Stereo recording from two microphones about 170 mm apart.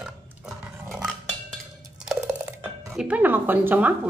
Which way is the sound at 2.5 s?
15° right (ahead or behind).